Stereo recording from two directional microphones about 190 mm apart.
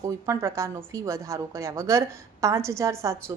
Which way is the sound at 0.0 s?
15° right (ahead or behind).